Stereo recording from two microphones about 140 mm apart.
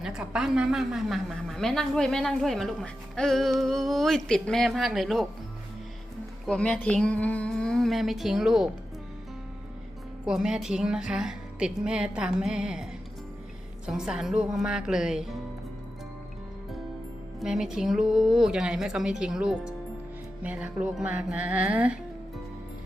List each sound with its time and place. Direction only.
0.0 s a woman's voice: 5° right (ahead or behind)
6.4 s a woman's voice: 5° left (ahead or behind)
10.2 s a woman's voice: 5° right (ahead or behind)
17.4 s a woman's voice: 5° right (ahead or behind)